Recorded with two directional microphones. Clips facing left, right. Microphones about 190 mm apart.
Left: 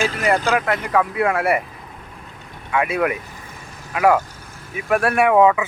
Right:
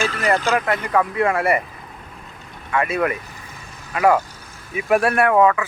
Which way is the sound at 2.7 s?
10° left (ahead or behind).